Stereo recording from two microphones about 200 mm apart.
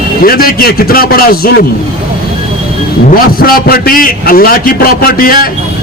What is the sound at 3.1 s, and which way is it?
A man's voice, 45° left (ahead or behind).